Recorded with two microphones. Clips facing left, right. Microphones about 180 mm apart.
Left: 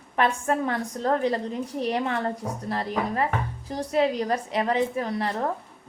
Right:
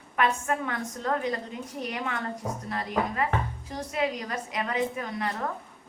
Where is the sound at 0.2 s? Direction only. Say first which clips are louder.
Left 3 dB; 35° left (ahead or behind).